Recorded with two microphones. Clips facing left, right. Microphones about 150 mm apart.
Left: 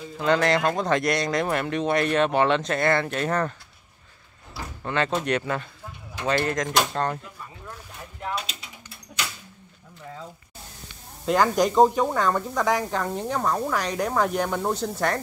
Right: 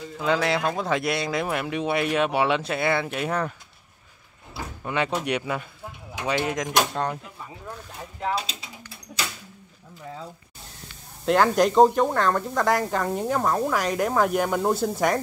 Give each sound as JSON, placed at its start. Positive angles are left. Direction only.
{"t": 0.2, "sound": "speech", "side_deg": -5}
{"t": 4.8, "sound": "speech", "side_deg": -10}
{"t": 8.2, "sound": "mechanisms", "side_deg": -30}
{"t": 11.2, "sound": "speech", "side_deg": 0}